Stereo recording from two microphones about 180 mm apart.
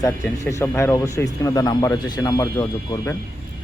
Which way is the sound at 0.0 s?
15° left (ahead or behind).